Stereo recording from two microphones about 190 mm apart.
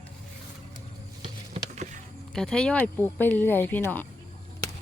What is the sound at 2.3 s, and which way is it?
Speech, centre (ahead or behind).